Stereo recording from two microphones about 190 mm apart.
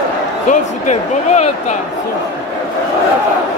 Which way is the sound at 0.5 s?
40° left (ahead or behind).